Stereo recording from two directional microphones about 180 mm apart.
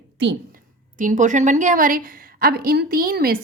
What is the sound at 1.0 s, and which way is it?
A woman's voice, 45° right (ahead or behind).